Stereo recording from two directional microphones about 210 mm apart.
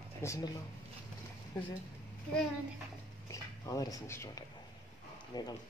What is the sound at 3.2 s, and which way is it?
Speech, 15° left (ahead or behind).